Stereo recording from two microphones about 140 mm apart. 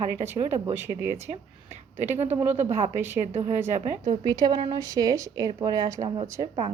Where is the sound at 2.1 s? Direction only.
50° right (ahead or behind).